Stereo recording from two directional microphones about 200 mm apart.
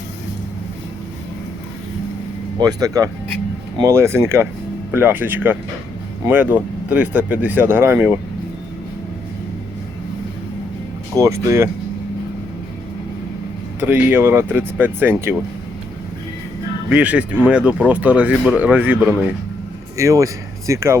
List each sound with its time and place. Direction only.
2.6 s speech: 20° right (ahead or behind)
11.1 s speech: 15° right (ahead or behind)
13.7 s speech: 10° right (ahead or behind)
16.9 s speech: 5° right (ahead or behind)